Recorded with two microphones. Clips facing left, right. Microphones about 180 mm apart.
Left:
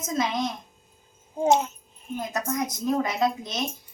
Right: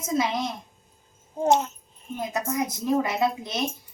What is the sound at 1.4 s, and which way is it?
A child's voice, centre (ahead or behind).